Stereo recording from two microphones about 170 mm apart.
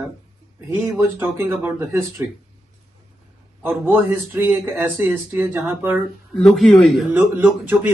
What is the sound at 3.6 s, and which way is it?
Speech, 15° right (ahead or behind).